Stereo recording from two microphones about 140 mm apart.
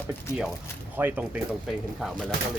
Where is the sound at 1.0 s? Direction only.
10° right (ahead or behind).